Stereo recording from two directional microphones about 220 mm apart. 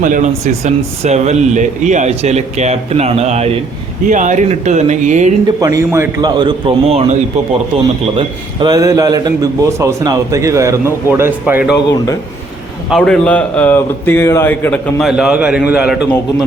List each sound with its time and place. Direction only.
0.0 s speech: 35° right (ahead or behind)
5.5 s a man's voice: 15° right (ahead or behind)
12.9 s a man's voice: 5° left (ahead or behind)